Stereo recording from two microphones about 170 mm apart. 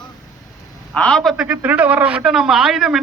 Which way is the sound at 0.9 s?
5° left (ahead or behind).